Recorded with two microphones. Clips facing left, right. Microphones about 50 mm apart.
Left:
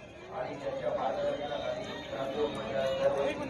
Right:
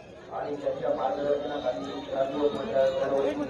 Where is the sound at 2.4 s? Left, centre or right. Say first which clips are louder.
Right 9 dB; left.